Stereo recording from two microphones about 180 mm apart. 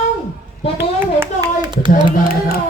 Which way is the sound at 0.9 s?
15° right (ahead or behind).